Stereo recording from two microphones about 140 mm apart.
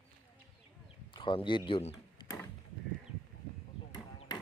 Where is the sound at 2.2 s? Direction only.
35° left (ahead or behind).